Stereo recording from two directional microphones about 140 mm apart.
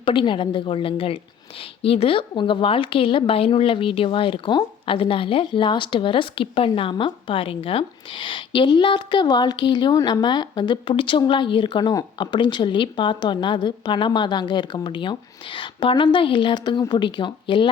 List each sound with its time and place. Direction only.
0.0 s a woman's voice: 35° left (ahead or behind)